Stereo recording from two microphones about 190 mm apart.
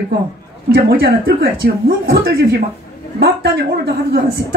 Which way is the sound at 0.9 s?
50° right (ahead or behind).